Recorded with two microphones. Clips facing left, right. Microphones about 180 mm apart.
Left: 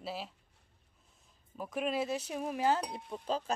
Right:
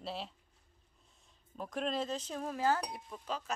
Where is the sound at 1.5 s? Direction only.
5° left (ahead or behind).